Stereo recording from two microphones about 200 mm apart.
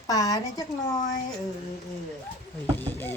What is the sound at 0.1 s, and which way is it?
Speech, 15° left (ahead or behind).